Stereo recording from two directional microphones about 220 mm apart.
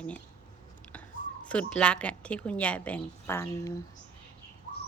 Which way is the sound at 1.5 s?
5° left (ahead or behind).